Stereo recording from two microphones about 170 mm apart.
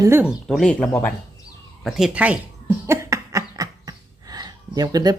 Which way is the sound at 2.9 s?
15° right (ahead or behind).